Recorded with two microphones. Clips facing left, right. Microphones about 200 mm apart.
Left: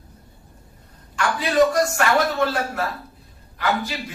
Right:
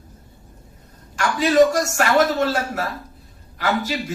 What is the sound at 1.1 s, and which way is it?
A man's voice, 45° right (ahead or behind).